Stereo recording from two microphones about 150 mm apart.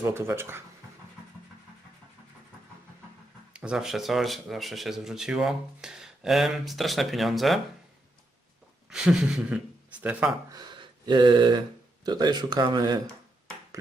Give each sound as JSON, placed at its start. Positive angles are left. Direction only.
{"t": 0.0, "sound": "speech", "side_deg": -15}
{"t": 3.5, "sound": "speech", "side_deg": -5}
{"t": 8.9, "sound": "speech", "side_deg": -5}
{"t": 10.5, "sound": "a sound", "side_deg": -30}
{"t": 12.0, "sound": "speech", "side_deg": -25}